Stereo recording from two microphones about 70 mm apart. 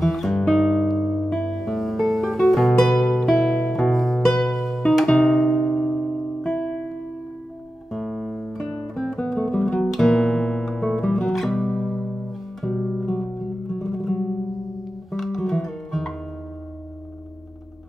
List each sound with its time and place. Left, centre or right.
0.0 s guitar: centre
0.4 s music: centre
7.9 s guitar: centre
10.9 s music: centre
15.0 s guitar: centre